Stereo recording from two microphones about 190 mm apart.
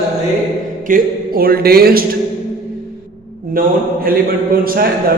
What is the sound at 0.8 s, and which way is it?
A man's voice, 50° right (ahead or behind).